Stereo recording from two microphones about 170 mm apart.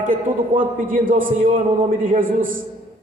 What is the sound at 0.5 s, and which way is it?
A man's voice, 55° right (ahead or behind).